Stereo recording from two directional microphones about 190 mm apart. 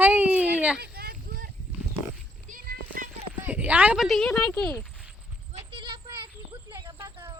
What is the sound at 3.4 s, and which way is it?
Speech, 10° right (ahead or behind).